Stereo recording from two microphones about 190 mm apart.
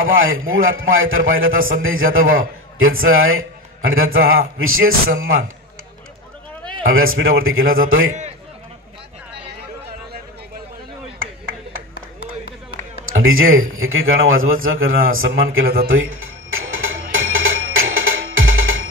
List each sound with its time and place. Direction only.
0.0 s a man's voice: 90° right
6.8 s a man's voice: 90° right
13.0 s a man's voice: 90° right
15.6 s speech: 50° right (ahead or behind)
15.9 s music: 90° right